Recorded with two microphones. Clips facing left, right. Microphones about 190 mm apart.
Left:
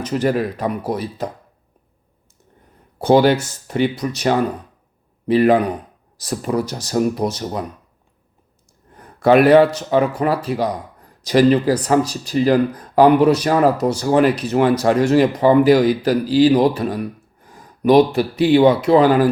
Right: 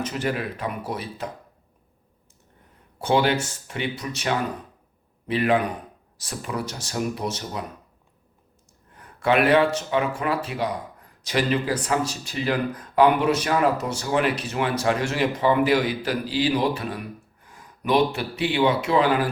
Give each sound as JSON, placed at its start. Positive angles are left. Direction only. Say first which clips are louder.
{"t": 0.0, "sound": "speech", "louder": "left 8 dB", "side_deg": 40}
{"t": 3.0, "sound": "speech", "louder": "left 8 dB", "side_deg": 40}
{"t": 9.2, "sound": "speech", "louder": "left 8 dB", "side_deg": 40}